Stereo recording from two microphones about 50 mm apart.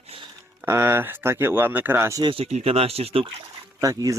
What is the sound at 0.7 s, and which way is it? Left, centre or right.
Speech, right.